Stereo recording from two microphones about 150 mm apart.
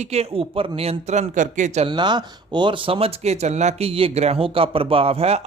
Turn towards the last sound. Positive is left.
turn(degrees=-40)  # may be behind; listen again after turning